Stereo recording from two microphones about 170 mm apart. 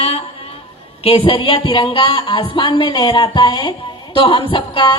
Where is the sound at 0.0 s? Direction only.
40° left (ahead or behind).